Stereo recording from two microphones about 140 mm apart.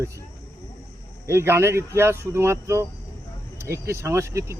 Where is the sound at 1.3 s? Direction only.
20° right (ahead or behind).